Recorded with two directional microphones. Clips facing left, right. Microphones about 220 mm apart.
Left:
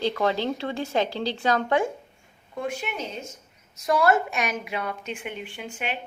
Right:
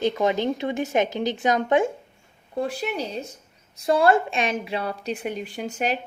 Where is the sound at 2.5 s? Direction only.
35° right (ahead or behind).